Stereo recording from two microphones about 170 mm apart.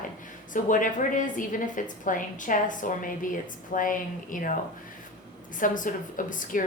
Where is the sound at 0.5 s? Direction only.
50° left (ahead or behind).